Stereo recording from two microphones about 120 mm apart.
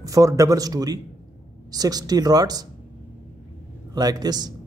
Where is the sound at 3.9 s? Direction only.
35° right (ahead or behind).